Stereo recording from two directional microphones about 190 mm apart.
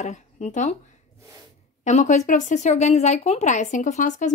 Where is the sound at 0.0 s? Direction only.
40° left (ahead or behind).